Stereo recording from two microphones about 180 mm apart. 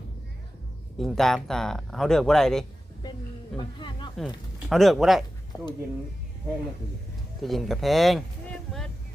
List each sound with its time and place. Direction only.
0.9 s speech: centre (ahead or behind)
3.6 s speech: 25° left (ahead or behind)
4.7 s speech: centre (ahead or behind)
5.5 s speech: 20° left (ahead or behind)
7.4 s speech: centre (ahead or behind)